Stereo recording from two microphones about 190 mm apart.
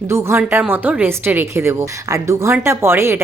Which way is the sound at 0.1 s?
15° right (ahead or behind).